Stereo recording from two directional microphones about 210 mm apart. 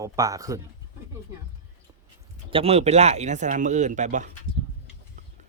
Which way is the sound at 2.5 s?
30° right (ahead or behind).